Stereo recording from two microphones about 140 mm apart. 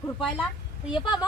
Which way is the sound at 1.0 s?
35° left (ahead or behind).